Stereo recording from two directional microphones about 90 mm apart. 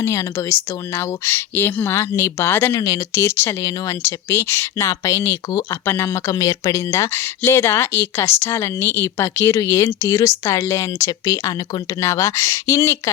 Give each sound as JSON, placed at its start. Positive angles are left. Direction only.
{"t": 0.0, "sound": "speech", "side_deg": 35}
{"t": 2.8, "sound": "speech", "side_deg": 35}